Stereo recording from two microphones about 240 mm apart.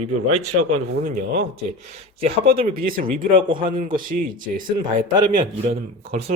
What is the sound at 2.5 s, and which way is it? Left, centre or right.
Speech, right.